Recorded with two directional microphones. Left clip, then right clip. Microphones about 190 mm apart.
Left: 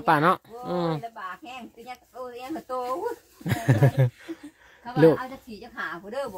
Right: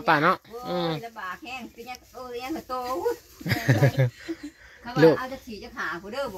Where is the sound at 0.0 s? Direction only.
25° left (ahead or behind).